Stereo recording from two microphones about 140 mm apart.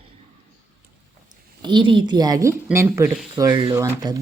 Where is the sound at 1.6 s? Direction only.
35° right (ahead or behind).